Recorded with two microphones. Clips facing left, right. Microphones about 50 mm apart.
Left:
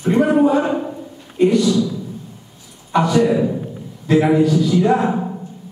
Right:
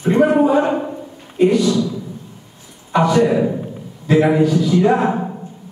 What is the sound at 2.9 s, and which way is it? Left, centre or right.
Speech, centre.